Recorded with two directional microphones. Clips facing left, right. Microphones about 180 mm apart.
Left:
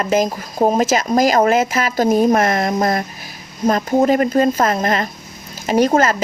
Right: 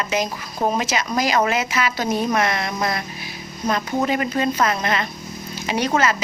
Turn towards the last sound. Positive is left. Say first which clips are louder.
# left 6 dB
turn(degrees=45)  # may be behind; listen again after turning